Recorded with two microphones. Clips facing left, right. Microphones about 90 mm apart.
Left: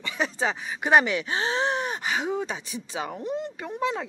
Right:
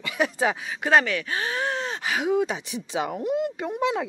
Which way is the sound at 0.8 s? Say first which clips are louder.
Left 1 dB; 15° left (ahead or behind).